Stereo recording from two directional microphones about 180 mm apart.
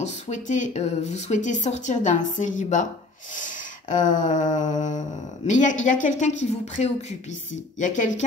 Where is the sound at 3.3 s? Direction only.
45° left (ahead or behind).